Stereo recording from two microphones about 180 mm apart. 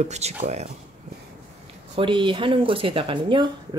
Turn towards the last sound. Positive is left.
turn(degrees=-25)  # may be behind; listen again after turning